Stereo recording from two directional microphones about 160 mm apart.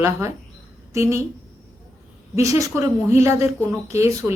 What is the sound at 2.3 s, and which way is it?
A man's voice, 20° right (ahead or behind).